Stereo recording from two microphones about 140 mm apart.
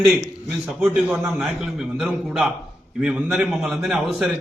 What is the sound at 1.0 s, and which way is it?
Speech, 15° right (ahead or behind).